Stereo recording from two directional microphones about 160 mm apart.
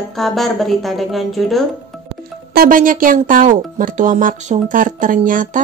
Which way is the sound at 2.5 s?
60° right (ahead or behind).